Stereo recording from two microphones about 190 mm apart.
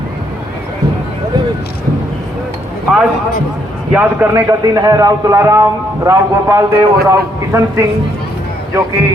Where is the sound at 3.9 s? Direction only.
10° right (ahead or behind).